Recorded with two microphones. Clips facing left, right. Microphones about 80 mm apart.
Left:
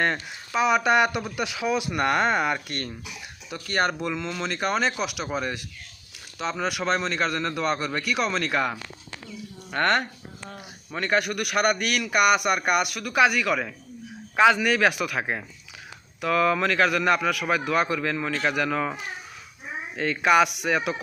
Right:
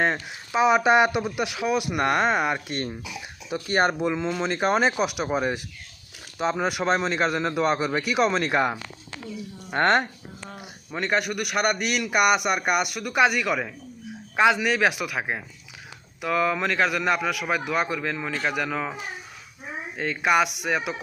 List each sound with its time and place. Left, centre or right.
0.0 s a man's voice: centre
4.8 s a man's voice: centre; by 10.1 s right
10.5 s a man's voice: centre
20.0 s a man's voice: centre